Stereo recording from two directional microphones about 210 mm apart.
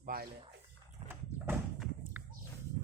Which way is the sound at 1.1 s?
10° right (ahead or behind).